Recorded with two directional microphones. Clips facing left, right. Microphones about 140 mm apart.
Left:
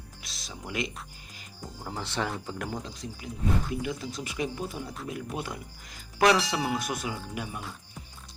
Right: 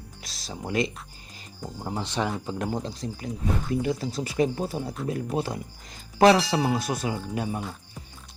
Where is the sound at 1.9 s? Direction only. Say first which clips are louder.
Right 4 dB; 15° right (ahead or behind).